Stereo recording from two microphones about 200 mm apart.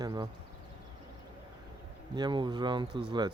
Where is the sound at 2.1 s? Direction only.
20° right (ahead or behind).